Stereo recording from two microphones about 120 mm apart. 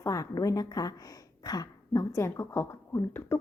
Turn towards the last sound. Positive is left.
turn(degrees=20)  # may be behind; listen again after turning